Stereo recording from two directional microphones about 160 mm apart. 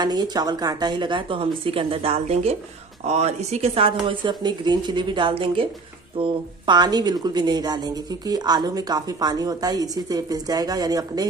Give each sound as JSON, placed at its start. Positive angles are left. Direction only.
{"t": 0.0, "sound": "speech", "side_deg": -25}